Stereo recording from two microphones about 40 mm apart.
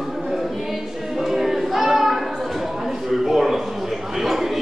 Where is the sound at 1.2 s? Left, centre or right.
Centre.